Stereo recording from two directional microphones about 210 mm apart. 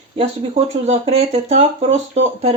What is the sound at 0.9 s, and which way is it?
Speech, 30° right (ahead or behind).